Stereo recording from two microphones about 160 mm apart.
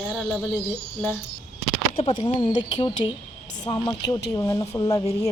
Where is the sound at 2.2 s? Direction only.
25° left (ahead or behind).